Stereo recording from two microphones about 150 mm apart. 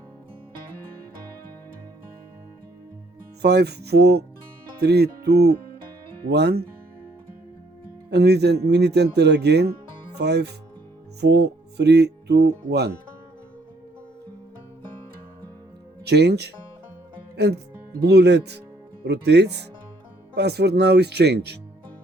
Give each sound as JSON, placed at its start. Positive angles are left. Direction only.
{"t": 3.4, "sound": "music", "side_deg": -90}
{"t": 8.1, "sound": "music", "side_deg": -90}
{"t": 16.0, "sound": "music", "side_deg": -90}
{"t": 18.1, "sound": "music", "side_deg": -90}